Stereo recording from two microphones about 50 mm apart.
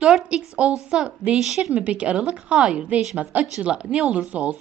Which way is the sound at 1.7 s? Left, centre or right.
Right.